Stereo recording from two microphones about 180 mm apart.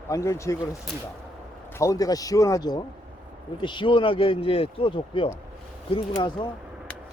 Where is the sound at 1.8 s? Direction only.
20° left (ahead or behind).